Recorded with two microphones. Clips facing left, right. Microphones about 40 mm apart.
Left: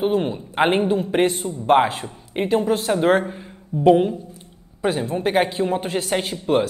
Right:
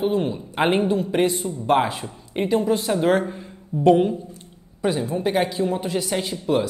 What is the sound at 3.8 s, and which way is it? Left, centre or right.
Speech, centre.